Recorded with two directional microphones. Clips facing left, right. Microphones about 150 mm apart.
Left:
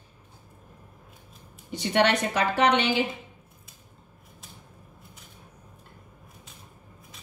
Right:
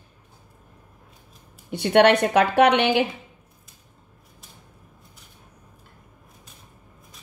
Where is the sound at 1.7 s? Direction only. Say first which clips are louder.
Right 7 dB; 60° right (ahead or behind).